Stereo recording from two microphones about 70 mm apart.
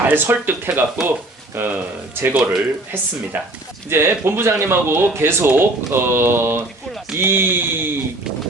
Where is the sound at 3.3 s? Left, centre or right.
Right.